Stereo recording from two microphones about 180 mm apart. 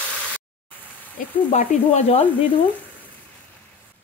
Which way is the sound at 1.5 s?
40° left (ahead or behind).